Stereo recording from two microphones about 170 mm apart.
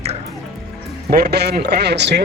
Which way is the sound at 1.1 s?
70° right (ahead or behind).